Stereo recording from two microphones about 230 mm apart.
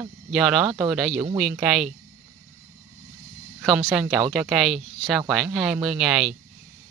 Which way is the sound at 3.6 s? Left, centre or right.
Centre.